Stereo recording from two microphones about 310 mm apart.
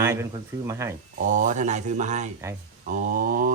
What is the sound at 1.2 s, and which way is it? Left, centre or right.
Speech, right.